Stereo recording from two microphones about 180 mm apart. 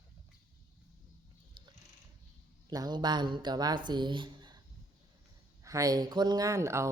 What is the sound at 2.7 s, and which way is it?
Speech, 20° right (ahead or behind).